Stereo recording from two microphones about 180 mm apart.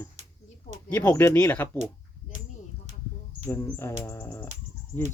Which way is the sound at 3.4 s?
15° left (ahead or behind).